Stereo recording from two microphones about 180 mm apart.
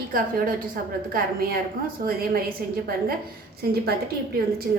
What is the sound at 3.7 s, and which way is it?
Speech, 60° right (ahead or behind).